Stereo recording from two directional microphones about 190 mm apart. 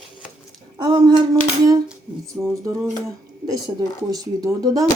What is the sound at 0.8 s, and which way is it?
Speech, 25° right (ahead or behind).